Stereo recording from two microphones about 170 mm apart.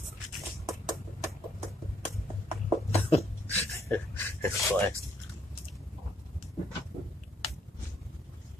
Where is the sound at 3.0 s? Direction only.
35° left (ahead or behind).